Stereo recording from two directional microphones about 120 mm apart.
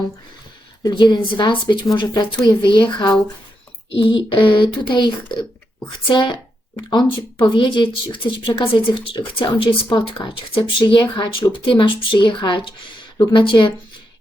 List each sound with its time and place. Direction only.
0.8 s speech: 35° left (ahead or behind)